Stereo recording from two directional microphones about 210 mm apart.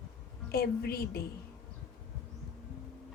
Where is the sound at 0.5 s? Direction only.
45° left (ahead or behind).